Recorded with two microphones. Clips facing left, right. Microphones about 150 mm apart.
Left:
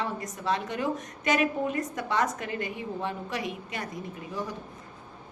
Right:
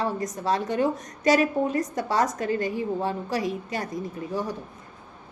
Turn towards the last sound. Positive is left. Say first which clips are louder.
# right 5 dB
turn(degrees=-35)  # may be behind; listen again after turning